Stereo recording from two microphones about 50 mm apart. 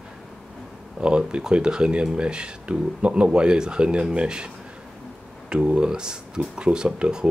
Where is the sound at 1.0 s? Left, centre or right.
Centre.